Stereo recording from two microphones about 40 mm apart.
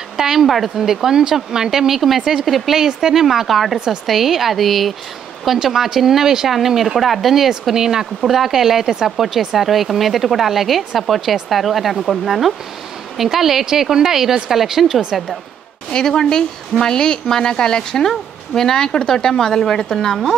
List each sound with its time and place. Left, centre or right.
0.2 s speech: centre
2.8 s speech: centre
5.6 s speech: centre
8.2 s speech: centre
16.1 s speech: centre